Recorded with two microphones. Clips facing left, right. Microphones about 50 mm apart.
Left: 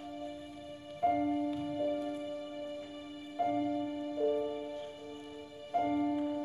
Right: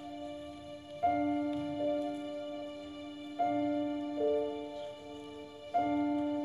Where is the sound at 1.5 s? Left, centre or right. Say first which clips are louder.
Right 1 dB; centre.